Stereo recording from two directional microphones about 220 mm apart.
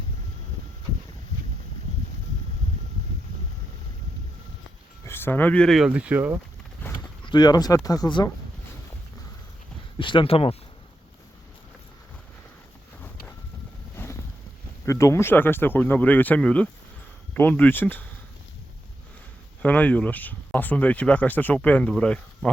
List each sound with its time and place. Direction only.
5.0 s speech: 10° left (ahead or behind); by 6.4 s 5° right (ahead or behind)
6.8 s a sound: 10° left (ahead or behind)
7.3 s speech: 20° left (ahead or behind)
10.0 s speech: 20° left (ahead or behind)
13.9 s boat: 10° left (ahead or behind)
14.8 s speech: 15° left (ahead or behind)
19.6 s speech: 5° left (ahead or behind)